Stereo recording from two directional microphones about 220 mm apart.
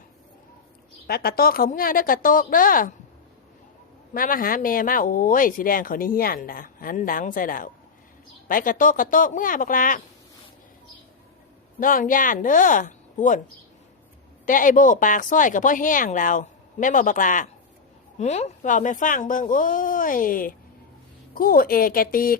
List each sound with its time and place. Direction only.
1.0 s speech: 45° left (ahead or behind)
4.1 s speech: 40° left (ahead or behind)
11.8 s speech: 40° left (ahead or behind)
14.4 s speech: 35° left (ahead or behind)